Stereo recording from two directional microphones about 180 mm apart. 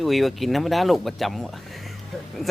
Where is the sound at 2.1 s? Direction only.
Centre (ahead or behind).